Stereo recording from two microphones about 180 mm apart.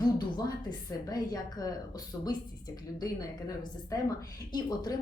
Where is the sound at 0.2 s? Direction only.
25° left (ahead or behind).